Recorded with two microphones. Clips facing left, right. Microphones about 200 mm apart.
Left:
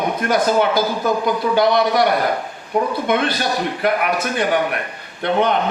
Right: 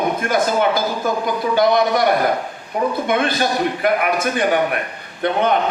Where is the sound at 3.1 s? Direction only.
50° right (ahead or behind).